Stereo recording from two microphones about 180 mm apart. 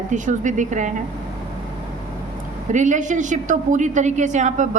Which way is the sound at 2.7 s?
45° right (ahead or behind).